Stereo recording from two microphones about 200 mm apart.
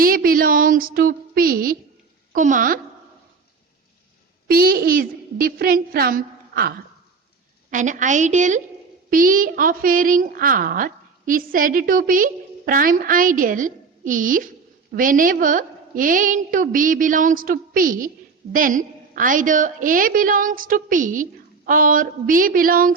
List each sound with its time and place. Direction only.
0.0 s a sound: 45° right (ahead or behind)
2.3 s a woman's voice: 40° right (ahead or behind)
4.4 s a woman's voice: 45° right (ahead or behind)